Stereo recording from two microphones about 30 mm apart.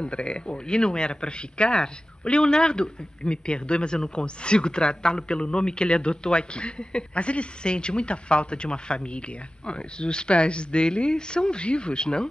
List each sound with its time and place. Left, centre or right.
0.0 s speech: left